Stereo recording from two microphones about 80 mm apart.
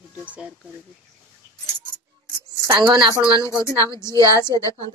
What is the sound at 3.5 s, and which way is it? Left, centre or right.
A woman's voice, left.